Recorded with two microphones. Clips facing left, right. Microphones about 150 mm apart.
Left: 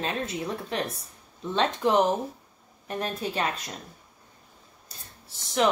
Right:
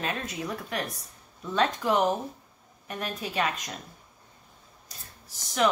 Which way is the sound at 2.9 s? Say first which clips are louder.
Left 4 dB; 35° left (ahead or behind).